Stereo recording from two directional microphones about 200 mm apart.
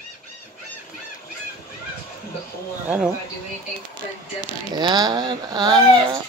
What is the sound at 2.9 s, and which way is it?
Speech, 5° right (ahead or behind).